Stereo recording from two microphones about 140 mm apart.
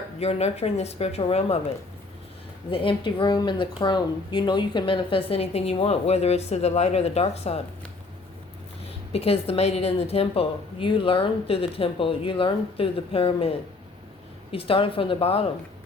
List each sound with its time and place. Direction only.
0.2 s speech: 50° left (ahead or behind)
2.6 s speech: 35° left (ahead or behind)
9.1 s a woman's voice: 45° left (ahead or behind)
14.5 s speech: 40° left (ahead or behind)